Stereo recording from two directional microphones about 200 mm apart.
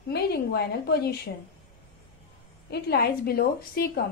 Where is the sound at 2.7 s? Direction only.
50° left (ahead or behind).